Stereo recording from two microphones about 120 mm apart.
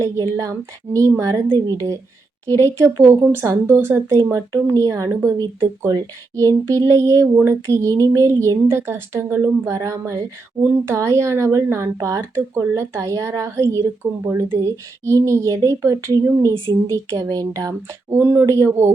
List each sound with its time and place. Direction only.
0.0 s speech: 25° right (ahead or behind)
2.6 s speech: 25° right (ahead or behind)